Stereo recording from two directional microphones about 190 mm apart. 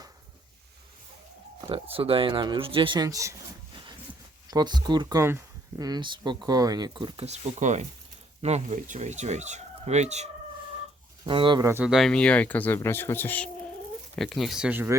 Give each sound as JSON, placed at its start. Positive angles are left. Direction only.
{"t": 1.7, "sound": "speech", "side_deg": -30}
{"t": 4.4, "sound": "speech", "side_deg": -20}
{"t": 11.3, "sound": "speech", "side_deg": -25}
{"t": 11.6, "sound": "speech", "side_deg": -10}